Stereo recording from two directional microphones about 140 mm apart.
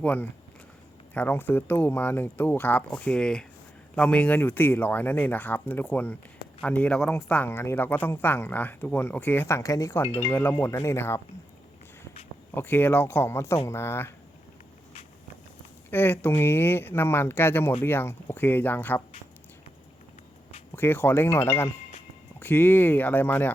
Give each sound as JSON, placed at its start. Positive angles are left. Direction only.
{"t": 0.0, "sound": "speech", "side_deg": 10}
{"t": 12.5, "sound": "speech", "side_deg": 15}
{"t": 15.9, "sound": "speech", "side_deg": 15}
{"t": 20.7, "sound": "speech", "side_deg": 15}